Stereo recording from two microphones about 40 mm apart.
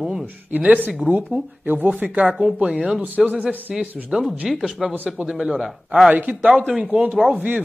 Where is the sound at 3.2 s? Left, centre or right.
Centre.